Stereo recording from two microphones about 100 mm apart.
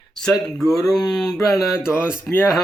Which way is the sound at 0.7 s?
35° left (ahead or behind).